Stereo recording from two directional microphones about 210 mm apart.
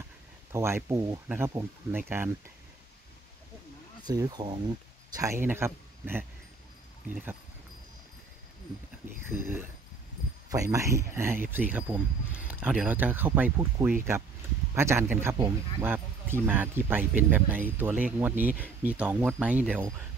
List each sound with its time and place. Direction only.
0.5 s speech: 10° right (ahead or behind)
4.0 s speech: 20° right (ahead or behind)
9.3 s speech: 10° right (ahead or behind)